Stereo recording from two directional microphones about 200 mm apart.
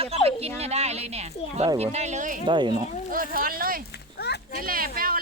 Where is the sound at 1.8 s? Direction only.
30° right (ahead or behind).